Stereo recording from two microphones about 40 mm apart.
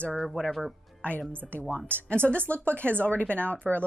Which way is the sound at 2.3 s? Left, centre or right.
Left.